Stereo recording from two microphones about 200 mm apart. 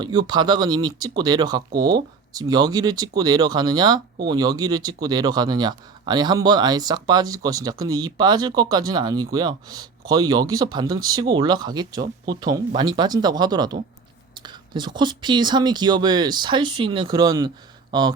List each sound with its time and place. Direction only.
0.0 s speech: 20° right (ahead or behind)